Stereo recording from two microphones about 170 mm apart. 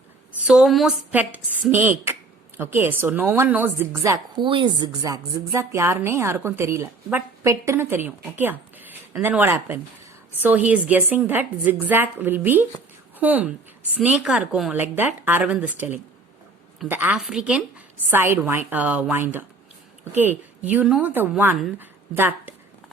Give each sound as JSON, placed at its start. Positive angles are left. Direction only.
{"t": 0.4, "sound": "a woman's voice", "side_deg": -5}
{"t": 4.4, "sound": "a woman's voice", "side_deg": -30}